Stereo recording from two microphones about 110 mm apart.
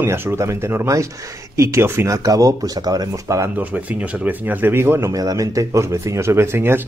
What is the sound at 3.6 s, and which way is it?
Speech, 10° right (ahead or behind).